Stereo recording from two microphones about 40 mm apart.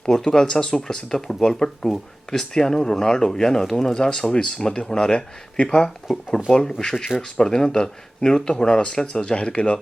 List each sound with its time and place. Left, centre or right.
0.0 s speech: centre
4.0 s a man's voice: centre